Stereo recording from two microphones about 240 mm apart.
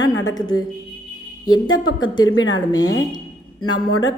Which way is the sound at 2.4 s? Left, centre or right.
Left.